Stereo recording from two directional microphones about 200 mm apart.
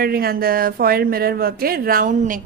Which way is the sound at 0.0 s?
50° right (ahead or behind).